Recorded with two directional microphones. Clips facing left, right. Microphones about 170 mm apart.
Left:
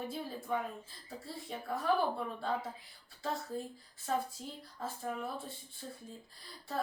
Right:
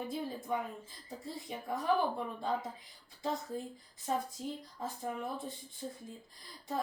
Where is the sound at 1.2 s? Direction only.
15° right (ahead or behind).